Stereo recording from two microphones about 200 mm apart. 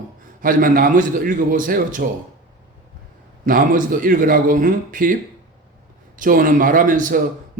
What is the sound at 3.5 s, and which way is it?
Speech, 45° right (ahead or behind).